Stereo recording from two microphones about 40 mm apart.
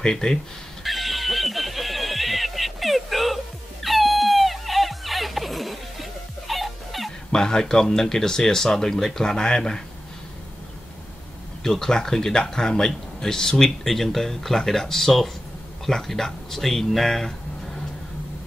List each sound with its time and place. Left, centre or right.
0.0 s speech: centre
0.8 s a sound: centre
7.3 s speech: centre
11.6 s speech: centre